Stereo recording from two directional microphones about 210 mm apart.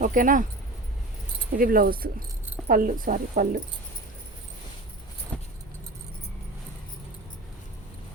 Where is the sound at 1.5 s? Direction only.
45° right (ahead or behind).